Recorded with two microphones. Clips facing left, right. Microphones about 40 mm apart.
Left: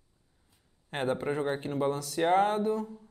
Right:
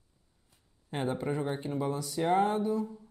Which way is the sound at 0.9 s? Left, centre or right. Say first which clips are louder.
Left 2 dB; left.